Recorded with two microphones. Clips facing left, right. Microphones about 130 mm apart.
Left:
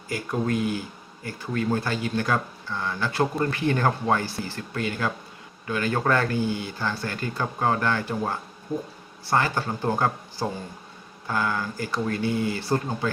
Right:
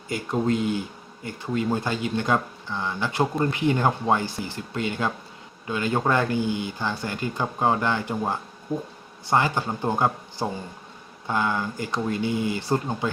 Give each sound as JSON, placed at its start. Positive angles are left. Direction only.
{"t": 0.1, "sound": "speech", "side_deg": -25}